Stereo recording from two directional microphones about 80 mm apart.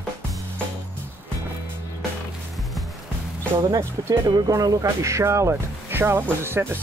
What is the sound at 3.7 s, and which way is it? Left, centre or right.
Speech, right.